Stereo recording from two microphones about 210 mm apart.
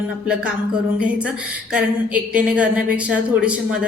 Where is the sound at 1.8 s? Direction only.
5° right (ahead or behind).